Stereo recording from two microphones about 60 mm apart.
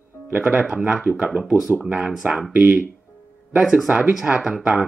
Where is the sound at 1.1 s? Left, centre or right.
Right.